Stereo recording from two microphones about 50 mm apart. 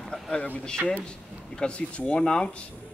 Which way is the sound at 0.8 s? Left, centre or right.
Right.